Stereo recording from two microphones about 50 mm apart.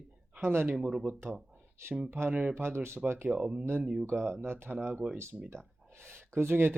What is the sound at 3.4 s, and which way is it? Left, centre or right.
Speech, right.